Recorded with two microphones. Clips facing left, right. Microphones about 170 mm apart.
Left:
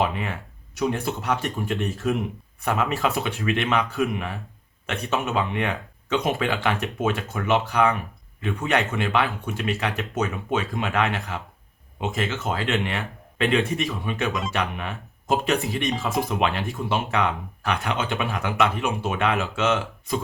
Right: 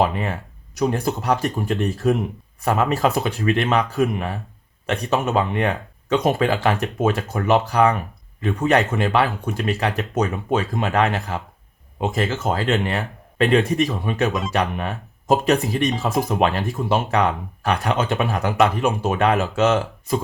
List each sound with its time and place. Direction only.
0.0 s speech: 40° right (ahead or behind)